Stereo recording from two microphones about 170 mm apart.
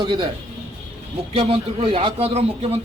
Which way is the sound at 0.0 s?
25° right (ahead or behind).